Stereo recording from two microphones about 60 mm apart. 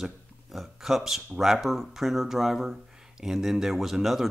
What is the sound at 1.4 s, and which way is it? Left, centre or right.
Speech, centre.